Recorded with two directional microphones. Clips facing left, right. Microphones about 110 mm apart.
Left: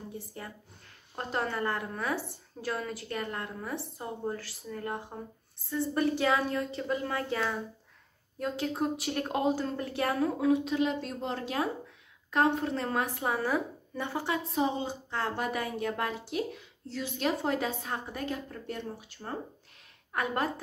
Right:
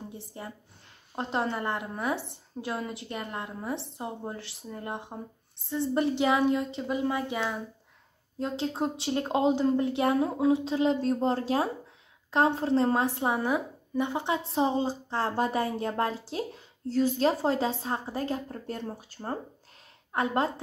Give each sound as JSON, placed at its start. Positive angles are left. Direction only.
{"t": 0.3, "sound": "a woman's voice", "side_deg": -20}
{"t": 20.1, "sound": "a woman's voice", "side_deg": -25}